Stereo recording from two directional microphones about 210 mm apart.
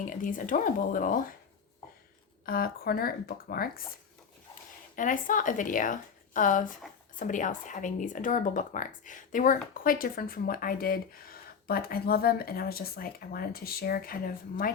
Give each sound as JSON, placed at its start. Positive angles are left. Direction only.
{"t": 0.1, "sound": "a woman's voice", "side_deg": 40}
{"t": 2.5, "sound": "speech", "side_deg": 45}
{"t": 4.9, "sound": "a woman's voice", "side_deg": 40}